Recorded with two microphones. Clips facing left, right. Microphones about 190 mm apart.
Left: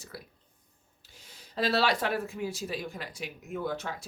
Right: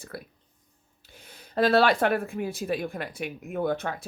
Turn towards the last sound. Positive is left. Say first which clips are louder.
# right 6 dB
turn(degrees=-55)  # may be behind; listen again after turning